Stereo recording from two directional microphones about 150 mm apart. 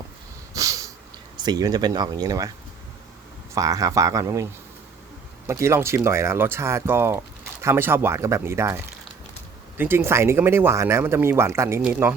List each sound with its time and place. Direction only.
0.5 s snort: 20° right (ahead or behind)
1.4 s speech: 25° right (ahead or behind)
3.5 s speech: 25° right (ahead or behind)
5.5 s speech: 20° right (ahead or behind)